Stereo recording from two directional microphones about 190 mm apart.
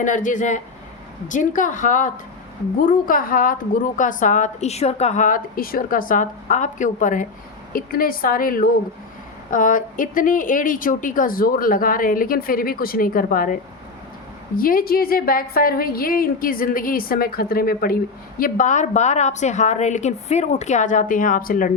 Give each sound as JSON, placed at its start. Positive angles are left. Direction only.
{"t": 0.0, "sound": "a woman's voice", "side_deg": 40}